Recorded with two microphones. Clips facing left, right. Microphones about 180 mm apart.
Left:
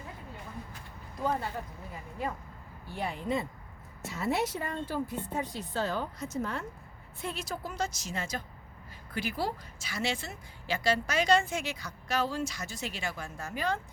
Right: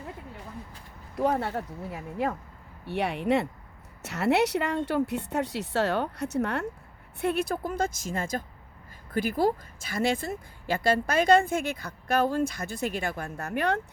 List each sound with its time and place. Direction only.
1.1 s a woman's voice: 70° right (ahead or behind)